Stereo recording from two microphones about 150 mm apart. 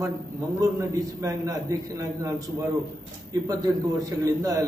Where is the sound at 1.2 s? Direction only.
20° right (ahead or behind).